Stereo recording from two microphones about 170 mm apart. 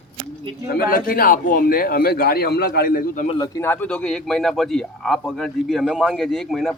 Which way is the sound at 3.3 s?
25° left (ahead or behind).